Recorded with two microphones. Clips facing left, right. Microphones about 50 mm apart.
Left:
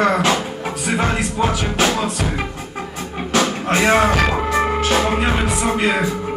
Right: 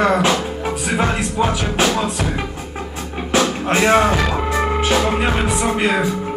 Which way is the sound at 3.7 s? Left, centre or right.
Centre.